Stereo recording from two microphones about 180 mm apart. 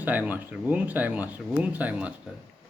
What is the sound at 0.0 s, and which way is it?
A man's voice, 10° right (ahead or behind).